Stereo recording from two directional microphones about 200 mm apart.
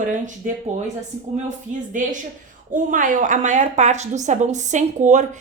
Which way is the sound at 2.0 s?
40° right (ahead or behind).